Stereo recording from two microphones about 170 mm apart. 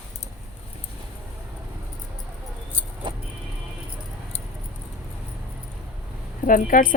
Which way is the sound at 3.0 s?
25° right (ahead or behind).